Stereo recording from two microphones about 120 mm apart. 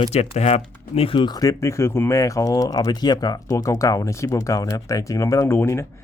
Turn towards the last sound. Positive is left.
turn(degrees=20)  # may be behind; listen again after turning